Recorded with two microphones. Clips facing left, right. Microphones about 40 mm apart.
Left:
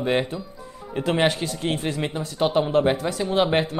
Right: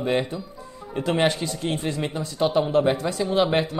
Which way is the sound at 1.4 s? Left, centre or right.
Left.